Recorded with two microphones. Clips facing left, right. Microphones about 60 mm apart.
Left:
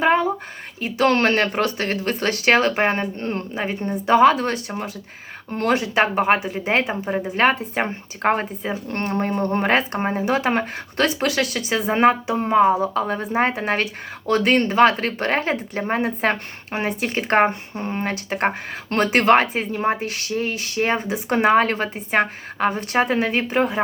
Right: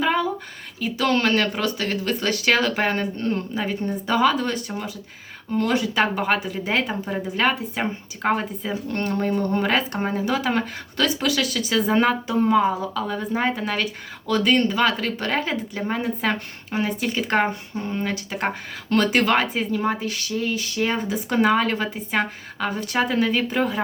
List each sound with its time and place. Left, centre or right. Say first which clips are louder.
0.0 s a sound: left 4 dB; left
0.8 s speech: left 3 dB; left
5.5 s speech: left 1 dB; left
5.7 s speech: left 5 dB; left
6.8 s speech: left 3 dB; left
7.3 s speech: left 4 dB; left